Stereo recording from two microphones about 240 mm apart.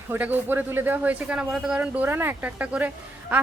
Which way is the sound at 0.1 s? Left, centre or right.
Centre.